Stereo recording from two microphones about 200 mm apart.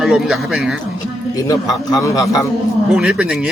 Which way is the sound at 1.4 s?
15° left (ahead or behind).